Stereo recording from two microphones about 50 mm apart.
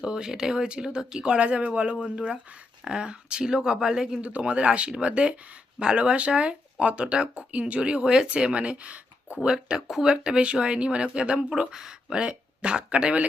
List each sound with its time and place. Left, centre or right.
0.0 s speech: centre
4.2 s speech: right